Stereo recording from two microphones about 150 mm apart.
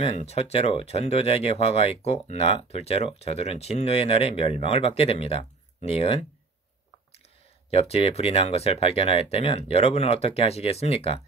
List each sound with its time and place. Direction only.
0.3 s speech: 45° left (ahead or behind)
7.7 s speech: 40° left (ahead or behind)